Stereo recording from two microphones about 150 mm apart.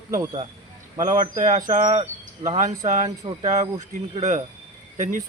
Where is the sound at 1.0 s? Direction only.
60° right (ahead or behind).